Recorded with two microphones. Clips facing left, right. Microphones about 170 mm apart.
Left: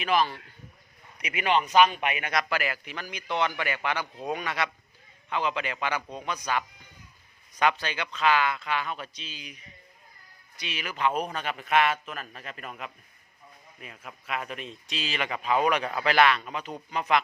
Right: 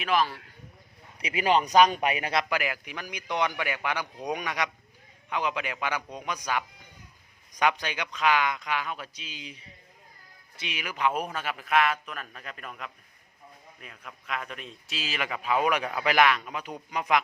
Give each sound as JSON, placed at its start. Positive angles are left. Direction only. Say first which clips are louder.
{"t": 0.0, "sound": "a man's voice", "louder": "left 1 dB", "side_deg": 0}
{"t": 1.2, "sound": "a man's voice", "louder": "right 2 dB", "side_deg": -30}
{"t": 2.4, "sound": "speech", "louder": "even", "side_deg": -15}
{"t": 9.4, "sound": "a man's voice", "louder": "right 2 dB", "side_deg": -25}
{"t": 10.6, "sound": "a man's voice", "louder": "even", "side_deg": -15}